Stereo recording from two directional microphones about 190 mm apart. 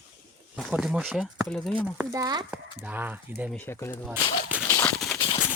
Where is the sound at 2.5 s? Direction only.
10° right (ahead or behind).